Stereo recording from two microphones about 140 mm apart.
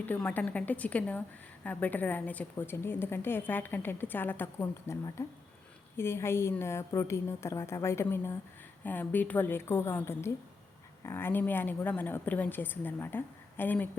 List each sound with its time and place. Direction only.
0.0 s a woman's voice: 10° left (ahead or behind)